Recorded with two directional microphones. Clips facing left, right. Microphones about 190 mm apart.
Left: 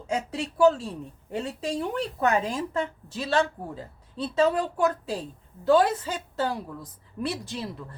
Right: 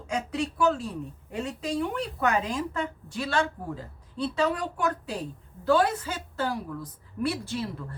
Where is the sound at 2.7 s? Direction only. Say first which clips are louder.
Left 2 dB; 25° left (ahead or behind).